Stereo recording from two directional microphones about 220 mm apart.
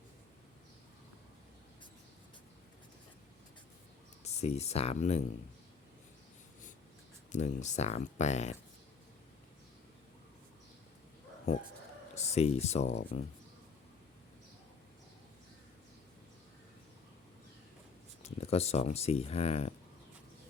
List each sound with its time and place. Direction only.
4.2 s speech: 30° left (ahead or behind)
7.3 s speech: 30° left (ahead or behind)
12.1 s speech: 30° left (ahead or behind)
18.2 s speech: 30° left (ahead or behind)